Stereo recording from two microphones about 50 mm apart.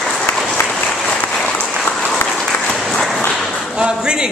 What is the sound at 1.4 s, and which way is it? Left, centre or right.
Applause, left.